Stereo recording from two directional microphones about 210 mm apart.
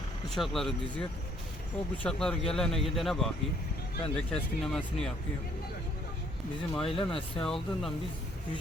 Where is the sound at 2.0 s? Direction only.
5° left (ahead or behind).